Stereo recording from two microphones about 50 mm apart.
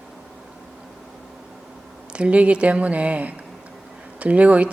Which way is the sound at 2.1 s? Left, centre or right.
Right.